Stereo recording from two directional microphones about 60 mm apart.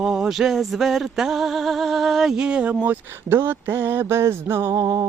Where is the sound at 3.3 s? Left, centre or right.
Right.